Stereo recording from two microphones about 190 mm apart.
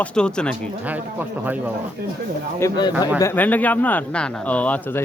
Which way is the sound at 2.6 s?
20° left (ahead or behind).